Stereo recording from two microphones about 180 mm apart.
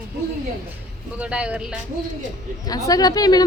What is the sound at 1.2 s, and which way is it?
Speech, 5° right (ahead or behind).